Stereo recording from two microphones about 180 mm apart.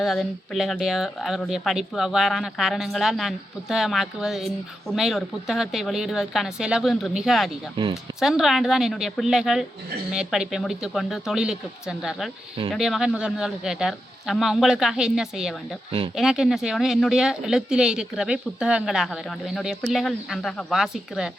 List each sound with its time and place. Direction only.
0.0 s speech: centre (ahead or behind)
7.8 s speech: 25° right (ahead or behind)
8.2 s speech: centre (ahead or behind)